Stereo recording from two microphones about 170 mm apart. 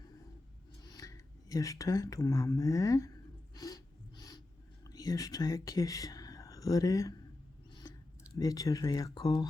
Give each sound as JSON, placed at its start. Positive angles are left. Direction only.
{"t": 0.8, "sound": "speech", "side_deg": 20}
{"t": 3.5, "sound": "a sound", "side_deg": 20}
{"t": 8.4, "sound": "speech", "side_deg": 20}